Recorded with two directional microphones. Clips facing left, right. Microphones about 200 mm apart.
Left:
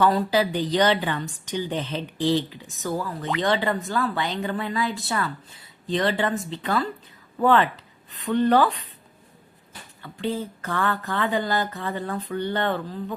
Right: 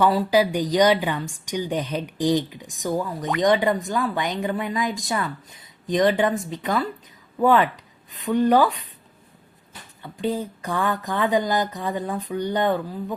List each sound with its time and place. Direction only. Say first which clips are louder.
0.0 s a woman's voice: right 2 dB; 10° right (ahead or behind)
10.0 s a woman's voice: right 2 dB; 15° right (ahead or behind)